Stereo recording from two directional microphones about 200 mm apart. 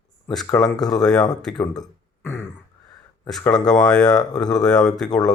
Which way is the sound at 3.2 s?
5° left (ahead or behind).